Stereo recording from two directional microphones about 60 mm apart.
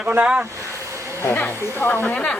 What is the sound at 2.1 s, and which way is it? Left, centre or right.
Speech, left.